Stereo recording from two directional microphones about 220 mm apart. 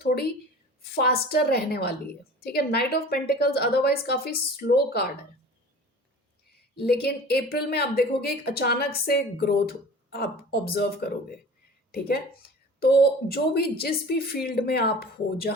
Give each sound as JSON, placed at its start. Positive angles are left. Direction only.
{"t": 0.0, "sound": "a woman's voice", "side_deg": 45}
{"t": 6.5, "sound": "speech", "side_deg": 45}
{"t": 12.8, "sound": "speech", "side_deg": 45}